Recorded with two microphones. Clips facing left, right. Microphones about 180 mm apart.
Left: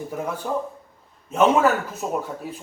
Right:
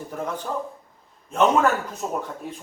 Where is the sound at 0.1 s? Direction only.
5° left (ahead or behind).